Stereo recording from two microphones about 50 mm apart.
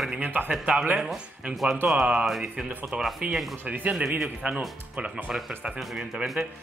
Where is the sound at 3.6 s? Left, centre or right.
Right.